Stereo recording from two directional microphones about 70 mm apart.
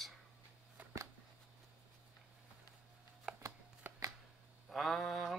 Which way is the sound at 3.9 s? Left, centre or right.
Right.